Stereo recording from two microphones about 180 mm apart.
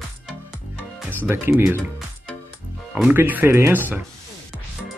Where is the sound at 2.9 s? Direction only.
5° right (ahead or behind).